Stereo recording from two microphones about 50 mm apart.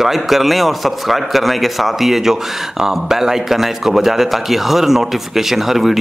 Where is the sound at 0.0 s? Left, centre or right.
Centre.